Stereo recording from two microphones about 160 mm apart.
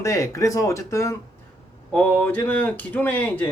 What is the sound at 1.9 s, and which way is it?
Speech, 10° left (ahead or behind).